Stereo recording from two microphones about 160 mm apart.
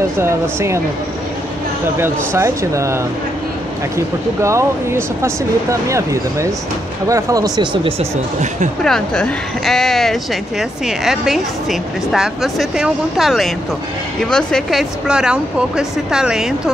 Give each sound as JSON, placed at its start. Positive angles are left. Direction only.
{"t": 0.2, "sound": "speech", "side_deg": -15}
{"t": 2.0, "sound": "speech", "side_deg": -15}
{"t": 4.4, "sound": "speech", "side_deg": -15}
{"t": 8.8, "sound": "a woman's voice", "side_deg": 5}